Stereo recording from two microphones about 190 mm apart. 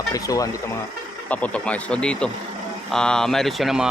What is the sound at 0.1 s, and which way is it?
Speech, 20° left (ahead or behind).